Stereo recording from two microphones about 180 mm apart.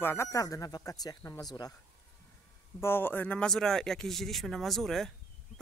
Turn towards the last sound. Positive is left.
turn(degrees=0)  # may be behind; listen again after turning